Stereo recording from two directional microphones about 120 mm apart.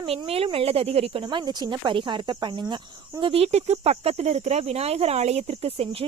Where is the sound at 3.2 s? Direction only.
55° right (ahead or behind).